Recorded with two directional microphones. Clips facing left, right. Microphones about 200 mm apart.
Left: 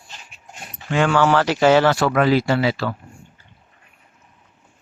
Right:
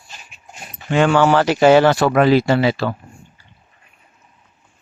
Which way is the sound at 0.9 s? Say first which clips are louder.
Right 3 dB; 25° right (ahead or behind).